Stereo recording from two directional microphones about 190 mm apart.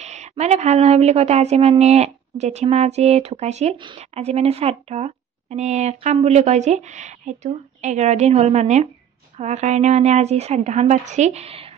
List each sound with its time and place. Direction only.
0.0 s speech: 35° right (ahead or behind)
3.7 s speech: 25° right (ahead or behind)